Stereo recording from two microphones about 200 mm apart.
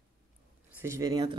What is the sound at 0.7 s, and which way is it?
Speech, 15° right (ahead or behind).